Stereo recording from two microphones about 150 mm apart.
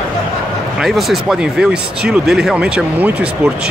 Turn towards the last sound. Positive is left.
turn(degrees=-10)  # may be behind; listen again after turning